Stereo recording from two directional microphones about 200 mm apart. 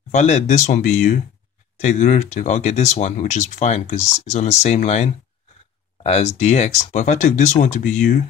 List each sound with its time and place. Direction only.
0.1 s speech: 35° left (ahead or behind)